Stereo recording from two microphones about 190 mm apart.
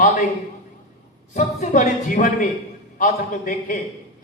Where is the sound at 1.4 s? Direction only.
40° left (ahead or behind).